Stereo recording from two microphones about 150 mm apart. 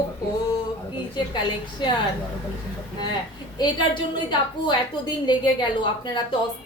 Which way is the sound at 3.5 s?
30° left (ahead or behind).